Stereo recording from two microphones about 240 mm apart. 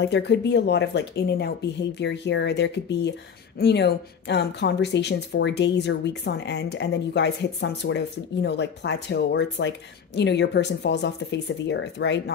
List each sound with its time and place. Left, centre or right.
0.0 s speech: left